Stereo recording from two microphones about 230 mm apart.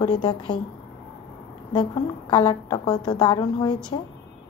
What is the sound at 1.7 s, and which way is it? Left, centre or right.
A woman's voice, centre.